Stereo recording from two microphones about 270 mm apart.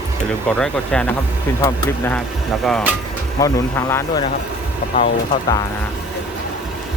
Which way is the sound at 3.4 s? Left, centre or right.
Centre.